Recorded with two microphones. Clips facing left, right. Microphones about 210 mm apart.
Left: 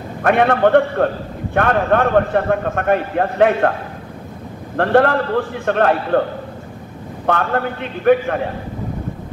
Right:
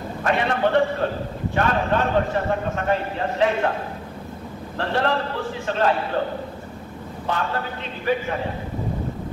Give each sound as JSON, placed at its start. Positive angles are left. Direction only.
{"t": 0.2, "sound": "a man's voice", "side_deg": 60}
{"t": 4.7, "sound": "a man's voice", "side_deg": 55}
{"t": 7.2, "sound": "a man's voice", "side_deg": 60}